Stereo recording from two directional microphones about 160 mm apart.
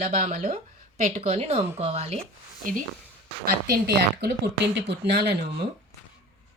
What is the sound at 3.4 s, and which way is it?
Speech, 80° right.